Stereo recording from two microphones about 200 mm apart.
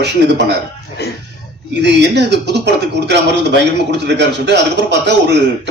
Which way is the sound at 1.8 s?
60° right (ahead or behind).